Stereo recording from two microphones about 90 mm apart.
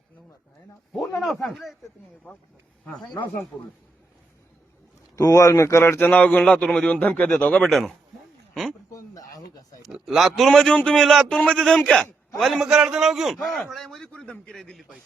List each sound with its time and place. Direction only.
0.9 s a man's voice: 5° left (ahead or behind)
5.1 s speech: 35° left (ahead or behind)
6.1 s a man's voice: 15° left (ahead or behind)
7.7 s a man's voice: centre (ahead or behind)
8.9 s a sound: 35° left (ahead or behind)
9.8 s a man's voice: centre (ahead or behind)